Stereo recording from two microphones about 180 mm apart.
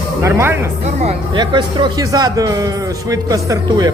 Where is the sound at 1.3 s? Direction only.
25° right (ahead or behind).